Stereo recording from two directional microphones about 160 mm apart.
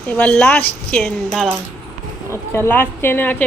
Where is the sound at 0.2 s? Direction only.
10° left (ahead or behind).